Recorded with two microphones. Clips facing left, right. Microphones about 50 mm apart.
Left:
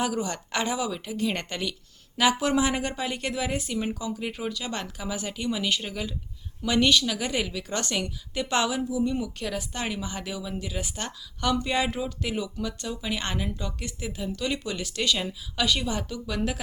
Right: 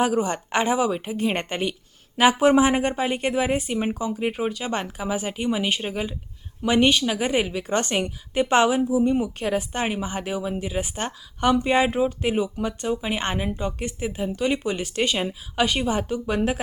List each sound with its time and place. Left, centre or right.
0.0 s speech: right